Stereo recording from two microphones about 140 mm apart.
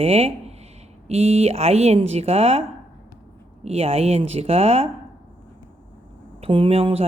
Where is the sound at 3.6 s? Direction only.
50° right (ahead or behind).